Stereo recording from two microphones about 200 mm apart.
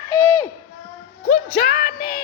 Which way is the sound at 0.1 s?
15° left (ahead or behind).